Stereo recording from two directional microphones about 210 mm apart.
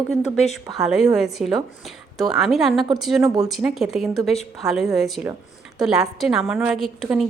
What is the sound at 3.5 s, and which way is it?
A woman's voice, centre (ahead or behind).